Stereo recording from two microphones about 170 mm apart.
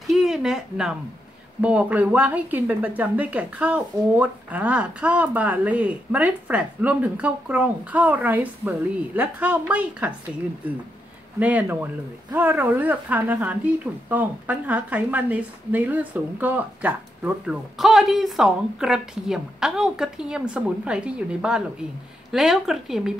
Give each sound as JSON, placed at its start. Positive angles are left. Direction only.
{"t": 0.1, "sound": "a woman's voice", "side_deg": 0}
{"t": 11.3, "sound": "a woman's voice", "side_deg": -10}